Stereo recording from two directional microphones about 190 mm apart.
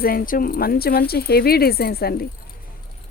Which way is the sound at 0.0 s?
50° left (ahead or behind).